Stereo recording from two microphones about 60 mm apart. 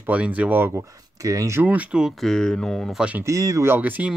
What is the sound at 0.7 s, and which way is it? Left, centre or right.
Speech, right.